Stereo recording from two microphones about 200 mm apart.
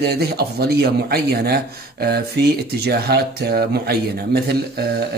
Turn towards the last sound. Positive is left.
turn(degrees=-50)  # may be behind; listen again after turning